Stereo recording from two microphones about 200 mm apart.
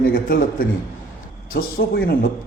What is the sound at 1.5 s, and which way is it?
Speech, 50° left (ahead or behind).